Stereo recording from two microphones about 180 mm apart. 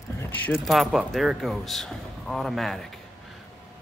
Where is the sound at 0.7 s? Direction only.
Centre (ahead or behind).